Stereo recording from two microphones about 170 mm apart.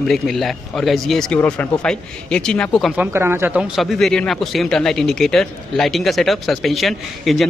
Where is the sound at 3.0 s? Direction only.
15° right (ahead or behind).